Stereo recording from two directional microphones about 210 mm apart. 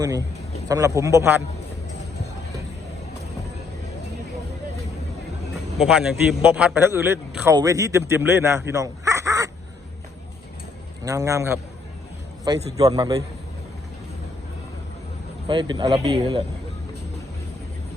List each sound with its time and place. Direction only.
0.0 s a man's voice: 15° right (ahead or behind)
5.7 s a man's voice: 5° right (ahead or behind)
11.0 s a man's voice: 15° right (ahead or behind)
15.4 s a man's voice: 20° right (ahead or behind)